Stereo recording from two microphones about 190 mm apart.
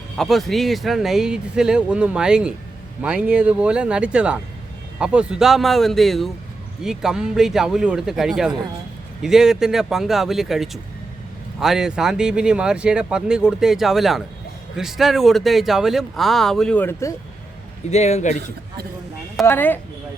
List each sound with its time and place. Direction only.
0.2 s speech: centre (ahead or behind)
17.9 s speech: 35° left (ahead or behind)
19.5 s speech: 10° left (ahead or behind)